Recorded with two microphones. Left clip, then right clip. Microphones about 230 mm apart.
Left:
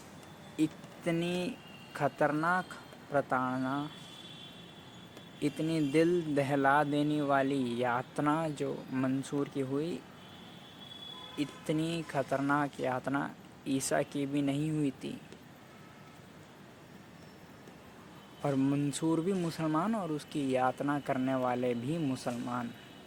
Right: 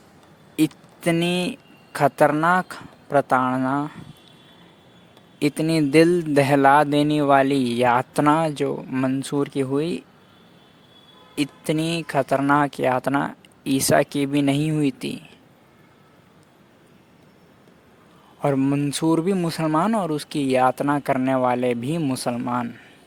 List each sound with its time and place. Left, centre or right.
0.5 s speech: right
5.4 s speech: right
11.3 s speech: right
18.4 s speech: right